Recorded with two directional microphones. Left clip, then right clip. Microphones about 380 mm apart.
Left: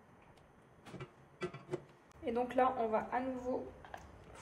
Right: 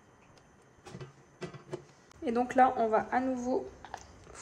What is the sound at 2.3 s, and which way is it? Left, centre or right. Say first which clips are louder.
A woman's voice: right 7 dB; right.